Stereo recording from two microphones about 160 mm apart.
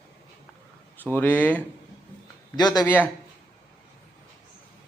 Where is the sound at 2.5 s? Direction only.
25° left (ahead or behind).